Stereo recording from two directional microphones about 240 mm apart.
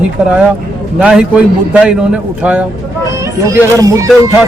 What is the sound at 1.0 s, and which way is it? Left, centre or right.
A man's voice, centre.